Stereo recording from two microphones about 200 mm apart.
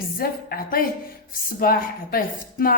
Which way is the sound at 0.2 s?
45° left (ahead or behind).